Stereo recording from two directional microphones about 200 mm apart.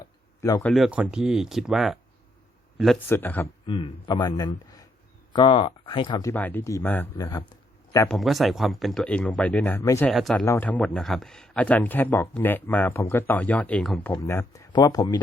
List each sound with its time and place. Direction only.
0.6 s a man's voice: centre (ahead or behind)
3.7 s a man's voice: 25° left (ahead or behind)
6.3 s speech: 10° left (ahead or behind)
8.0 s speech: centre (ahead or behind)
10.1 s a man's voice: centre (ahead or behind)
14.1 s a man's voice: 15° left (ahead or behind)